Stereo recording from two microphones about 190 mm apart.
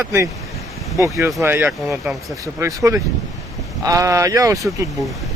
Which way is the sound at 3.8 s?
15° right (ahead or behind).